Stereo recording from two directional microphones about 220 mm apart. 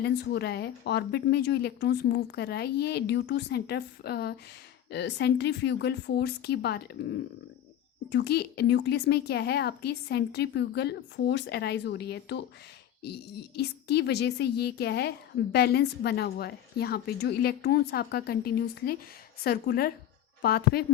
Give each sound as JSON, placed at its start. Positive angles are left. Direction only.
{"t": 0.0, "sound": "a woman's voice", "side_deg": 50}
{"t": 13.6, "sound": "a woman's voice", "side_deg": 50}